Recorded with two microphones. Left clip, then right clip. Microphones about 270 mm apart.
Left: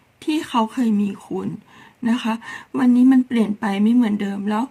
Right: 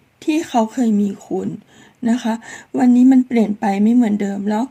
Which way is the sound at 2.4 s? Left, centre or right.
Left.